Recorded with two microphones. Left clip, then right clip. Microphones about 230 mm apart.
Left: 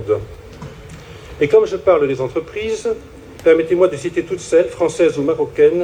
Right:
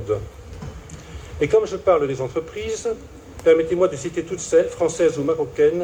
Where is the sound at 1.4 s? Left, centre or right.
Left.